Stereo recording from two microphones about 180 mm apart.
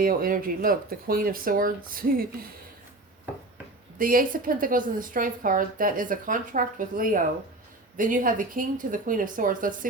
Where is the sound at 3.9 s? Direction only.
50° right (ahead or behind).